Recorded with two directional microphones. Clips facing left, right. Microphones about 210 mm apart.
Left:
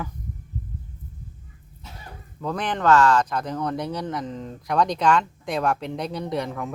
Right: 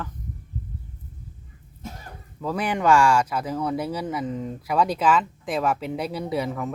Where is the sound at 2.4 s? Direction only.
5° right (ahead or behind).